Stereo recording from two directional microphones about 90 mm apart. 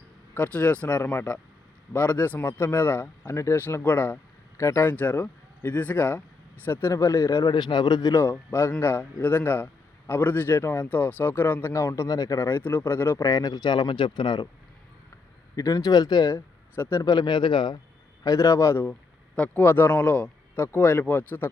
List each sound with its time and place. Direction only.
0.3 s speech: 20° left (ahead or behind)
4.9 s speech: 20° left (ahead or behind); by 7.4 s 35° left (ahead or behind)
7.4 s speech: 55° left (ahead or behind)
8.1 s speech: 30° left (ahead or behind)
13.2 s speech: 45° left (ahead or behind); by 14.4 s 60° left (ahead or behind)
15.5 s speech: 40° left (ahead or behind)
16.3 s speech: 30° left (ahead or behind)
17.0 s speech: 50° left (ahead or behind)
18.2 s speech: 40° left (ahead or behind)
19.4 s speech: 20° left (ahead or behind)